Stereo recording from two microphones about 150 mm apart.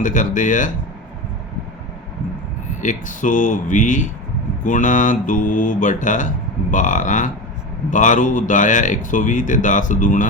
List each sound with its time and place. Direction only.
0.0 s speech: 60° left (ahead or behind)
2.8 s speech: 60° left (ahead or behind)